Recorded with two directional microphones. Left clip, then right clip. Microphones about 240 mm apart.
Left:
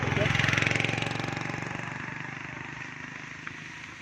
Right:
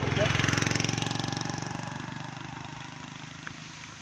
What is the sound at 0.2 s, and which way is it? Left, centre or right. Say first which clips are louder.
Vehicle: left 2 dB; right.